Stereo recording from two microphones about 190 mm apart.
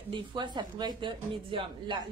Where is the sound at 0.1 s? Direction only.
25° right (ahead or behind).